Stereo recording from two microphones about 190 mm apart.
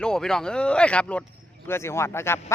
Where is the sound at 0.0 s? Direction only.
5° left (ahead or behind).